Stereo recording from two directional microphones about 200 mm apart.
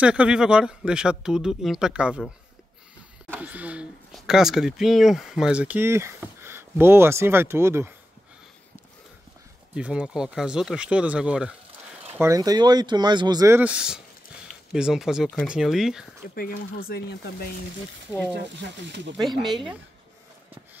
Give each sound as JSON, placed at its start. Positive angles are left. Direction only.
{"t": 0.0, "sound": "speech", "side_deg": -5}
{"t": 3.3, "sound": "speech", "side_deg": -5}
{"t": 9.8, "sound": "speech", "side_deg": -5}
{"t": 12.2, "sound": "speech", "side_deg": -15}
{"t": 16.3, "sound": "speech", "side_deg": 45}
{"t": 18.3, "sound": "speech", "side_deg": -60}
{"t": 19.4, "sound": "speech", "side_deg": 0}